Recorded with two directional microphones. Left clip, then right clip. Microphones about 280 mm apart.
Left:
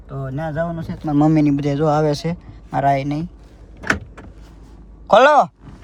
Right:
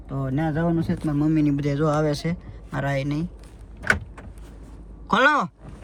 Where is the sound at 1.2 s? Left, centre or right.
Left.